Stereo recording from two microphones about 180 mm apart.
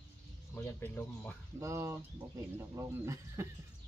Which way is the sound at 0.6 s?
10° left (ahead or behind).